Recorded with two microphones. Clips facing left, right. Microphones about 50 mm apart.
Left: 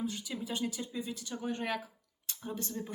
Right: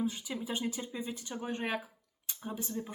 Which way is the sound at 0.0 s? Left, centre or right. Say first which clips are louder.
Right 2 dB; centre.